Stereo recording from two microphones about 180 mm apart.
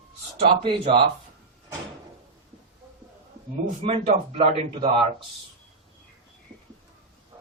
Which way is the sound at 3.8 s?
35° right (ahead or behind).